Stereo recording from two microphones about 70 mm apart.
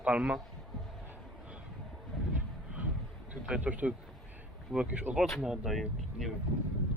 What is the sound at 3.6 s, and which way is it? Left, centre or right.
Speech, right.